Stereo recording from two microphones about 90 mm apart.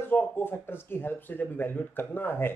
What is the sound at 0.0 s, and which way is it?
Speech, 20° left (ahead or behind).